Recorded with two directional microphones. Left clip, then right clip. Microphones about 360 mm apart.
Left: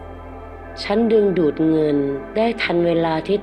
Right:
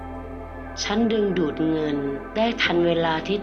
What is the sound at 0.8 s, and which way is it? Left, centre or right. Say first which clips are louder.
A woman's voice: left 6 dB; left.